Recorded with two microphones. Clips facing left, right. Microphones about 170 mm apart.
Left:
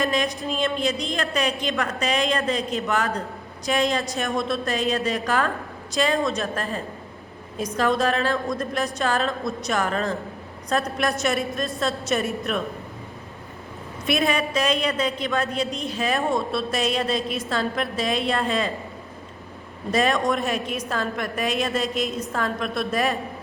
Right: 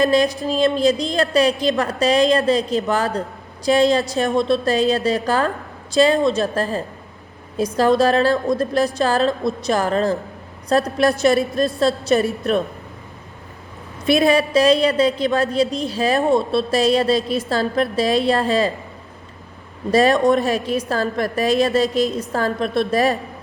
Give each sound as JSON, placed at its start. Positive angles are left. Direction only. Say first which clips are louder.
{"t": 0.0, "sound": "a woman's voice", "louder": "right 7 dB", "side_deg": -35}
{"t": 14.1, "sound": "a woman's voice", "louder": "right 7 dB", "side_deg": -35}
{"t": 19.9, "sound": "a woman's voice", "louder": "right 7 dB", "side_deg": -35}